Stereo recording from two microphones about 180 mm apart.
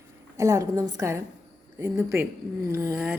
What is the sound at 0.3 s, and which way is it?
A woman's voice, 15° right (ahead or behind).